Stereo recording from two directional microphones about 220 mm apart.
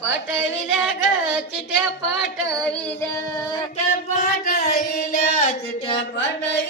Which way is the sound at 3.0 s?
15° left (ahead or behind).